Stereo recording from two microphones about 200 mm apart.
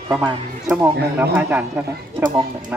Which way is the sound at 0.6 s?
5° right (ahead or behind).